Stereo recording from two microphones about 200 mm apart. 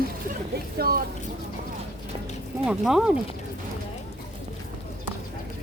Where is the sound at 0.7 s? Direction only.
50° right (ahead or behind).